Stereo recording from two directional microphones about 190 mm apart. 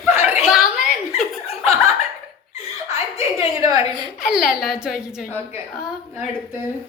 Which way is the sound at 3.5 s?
15° right (ahead or behind).